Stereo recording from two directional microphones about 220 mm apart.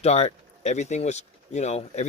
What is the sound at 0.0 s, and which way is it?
Speech, 30° left (ahead or behind).